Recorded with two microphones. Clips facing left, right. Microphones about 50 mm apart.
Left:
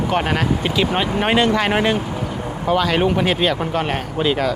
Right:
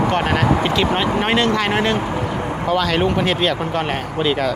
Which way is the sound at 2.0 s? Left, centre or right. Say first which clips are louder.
Right 3 dB; right.